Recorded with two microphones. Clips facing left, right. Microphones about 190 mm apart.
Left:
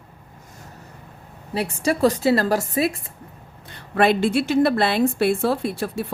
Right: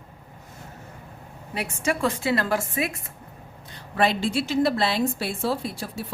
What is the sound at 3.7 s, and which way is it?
A woman's voice, 55° left (ahead or behind).